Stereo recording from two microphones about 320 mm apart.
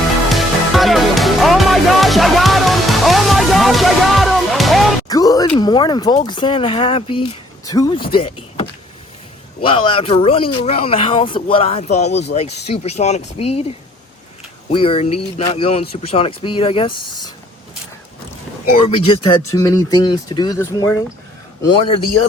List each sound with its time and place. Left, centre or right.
0.3 s music: centre
5.0 s speech: centre
9.6 s speech: centre
18.9 s speech: centre